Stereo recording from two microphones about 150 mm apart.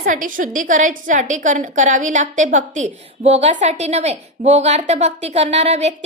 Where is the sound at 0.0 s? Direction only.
60° right (ahead or behind).